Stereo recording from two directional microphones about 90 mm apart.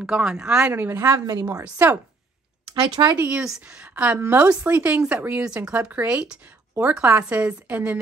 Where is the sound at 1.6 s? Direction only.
20° right (ahead or behind).